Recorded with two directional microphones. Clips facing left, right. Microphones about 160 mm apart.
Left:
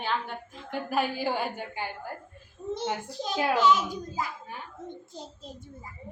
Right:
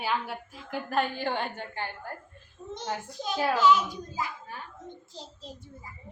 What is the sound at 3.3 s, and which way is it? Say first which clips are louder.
Speech: left 1 dB; 15° left (ahead or behind).